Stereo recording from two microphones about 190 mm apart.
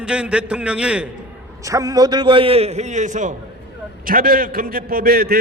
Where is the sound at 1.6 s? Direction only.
20° right (ahead or behind).